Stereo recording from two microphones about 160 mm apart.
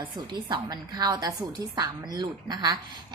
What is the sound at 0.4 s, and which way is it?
A woman's voice, 25° right (ahead or behind).